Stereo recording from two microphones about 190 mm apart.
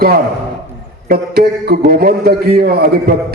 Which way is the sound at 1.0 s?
55° right (ahead or behind).